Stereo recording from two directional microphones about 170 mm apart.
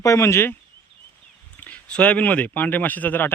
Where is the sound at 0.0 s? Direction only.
20° left (ahead or behind).